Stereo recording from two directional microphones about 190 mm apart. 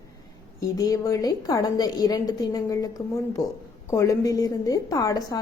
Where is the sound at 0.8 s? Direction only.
15° left (ahead or behind).